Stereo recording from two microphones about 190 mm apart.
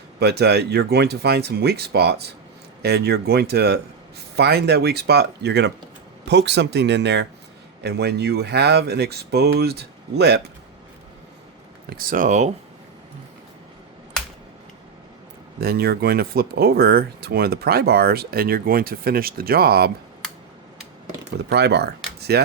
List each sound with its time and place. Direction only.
0.2 s speech: 60° right (ahead or behind)
11.9 s speech: 50° right (ahead or behind)
15.6 s speech: 55° right (ahead or behind)
21.5 s speech: 60° right (ahead or behind)